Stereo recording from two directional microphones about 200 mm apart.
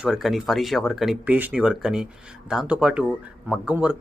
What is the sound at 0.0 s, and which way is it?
Speech, centre (ahead or behind).